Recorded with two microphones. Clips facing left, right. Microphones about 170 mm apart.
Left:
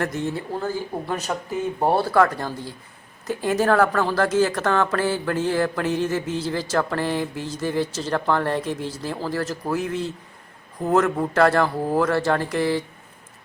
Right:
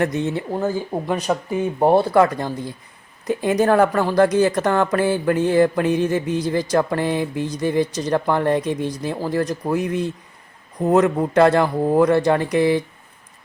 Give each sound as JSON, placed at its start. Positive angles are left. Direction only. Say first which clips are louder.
{"t": 0.0, "sound": "speech", "louder": "right 4 dB", "side_deg": -20}